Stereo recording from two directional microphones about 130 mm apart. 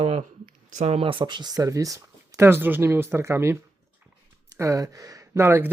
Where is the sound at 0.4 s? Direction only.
65° right (ahead or behind); by 1.2 s 45° right (ahead or behind).